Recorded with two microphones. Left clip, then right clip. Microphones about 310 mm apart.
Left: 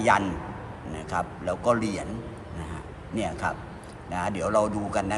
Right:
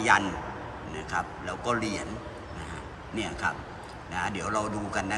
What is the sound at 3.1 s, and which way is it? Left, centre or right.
A man's voice, centre.